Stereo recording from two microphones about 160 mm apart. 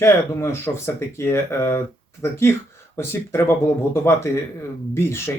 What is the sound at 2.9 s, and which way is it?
Speech, 15° left (ahead or behind).